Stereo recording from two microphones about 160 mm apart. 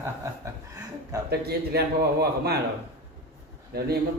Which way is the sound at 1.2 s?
80° right.